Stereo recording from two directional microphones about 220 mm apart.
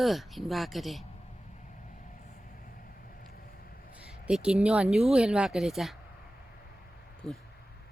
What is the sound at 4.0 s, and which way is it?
Speech, 5° right (ahead or behind).